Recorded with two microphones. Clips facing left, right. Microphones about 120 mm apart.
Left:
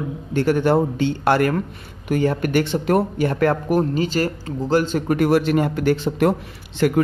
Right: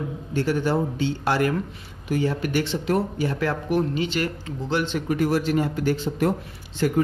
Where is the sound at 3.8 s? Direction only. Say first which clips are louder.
Left 4 dB; 40° left (ahead or behind).